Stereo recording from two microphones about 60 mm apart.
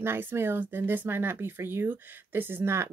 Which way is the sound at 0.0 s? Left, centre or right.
Right.